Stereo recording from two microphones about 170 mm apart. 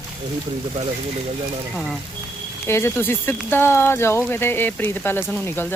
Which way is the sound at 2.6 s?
15° left (ahead or behind).